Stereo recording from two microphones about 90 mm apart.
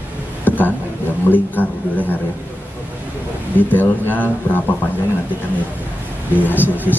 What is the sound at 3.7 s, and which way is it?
Speech, 20° left (ahead or behind).